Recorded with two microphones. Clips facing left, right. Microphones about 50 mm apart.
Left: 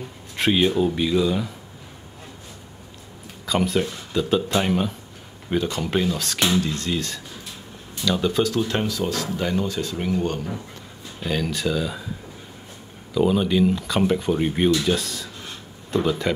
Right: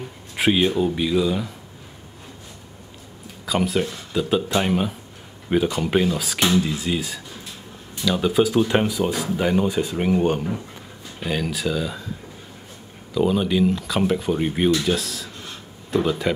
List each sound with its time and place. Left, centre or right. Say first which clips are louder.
0.4 s speech: even; centre
3.4 s speech: even; centre
11.2 s speech: even; centre
13.1 s speech: even; centre